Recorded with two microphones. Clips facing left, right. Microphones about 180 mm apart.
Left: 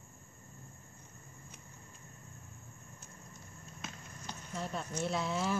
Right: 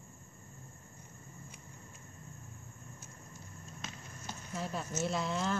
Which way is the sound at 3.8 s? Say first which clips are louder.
Left 1 dB; centre (ahead or behind).